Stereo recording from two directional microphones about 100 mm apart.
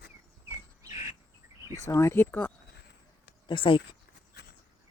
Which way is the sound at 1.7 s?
30° left (ahead or behind).